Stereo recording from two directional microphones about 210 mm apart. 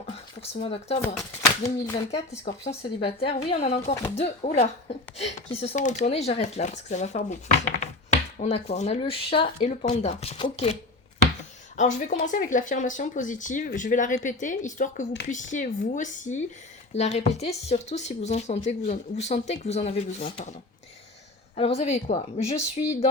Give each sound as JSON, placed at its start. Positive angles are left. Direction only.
{"t": 0.4, "sound": "speech", "side_deg": 30}
{"t": 1.0, "sound": "speech", "side_deg": 0}
{"t": 1.4, "sound": "speech", "side_deg": 15}
{"t": 2.4, "sound": "speech", "side_deg": 30}
{"t": 11.8, "sound": "speech", "side_deg": 35}
{"t": 21.5, "sound": "speech", "side_deg": 30}